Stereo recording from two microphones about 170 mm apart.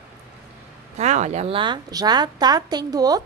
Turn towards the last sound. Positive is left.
turn(degrees=-20)  # may be behind; listen again after turning